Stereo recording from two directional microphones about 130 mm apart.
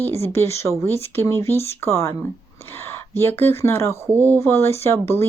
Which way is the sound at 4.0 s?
20° right (ahead or behind).